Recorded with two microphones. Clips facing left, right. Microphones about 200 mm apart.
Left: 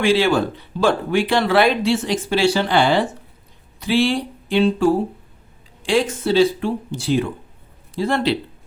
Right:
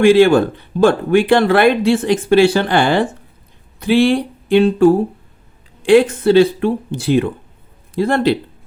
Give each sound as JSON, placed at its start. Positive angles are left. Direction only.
{"t": 0.0, "sound": "speech", "side_deg": -50}
{"t": 3.8, "sound": "a sound", "side_deg": -55}
{"t": 5.8, "sound": "speech", "side_deg": -55}